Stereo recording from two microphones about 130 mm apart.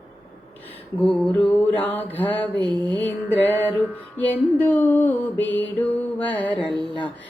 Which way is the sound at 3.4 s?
15° left (ahead or behind).